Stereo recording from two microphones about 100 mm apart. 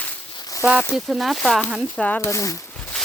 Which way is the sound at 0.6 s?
10° right (ahead or behind).